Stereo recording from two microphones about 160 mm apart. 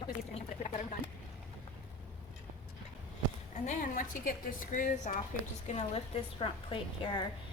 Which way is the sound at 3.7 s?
55° left (ahead or behind).